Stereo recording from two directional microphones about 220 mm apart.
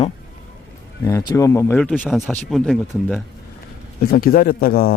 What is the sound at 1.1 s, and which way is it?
Speech, 15° left (ahead or behind).